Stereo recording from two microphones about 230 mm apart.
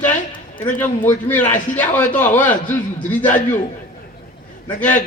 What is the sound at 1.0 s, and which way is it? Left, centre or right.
A man's voice, centre.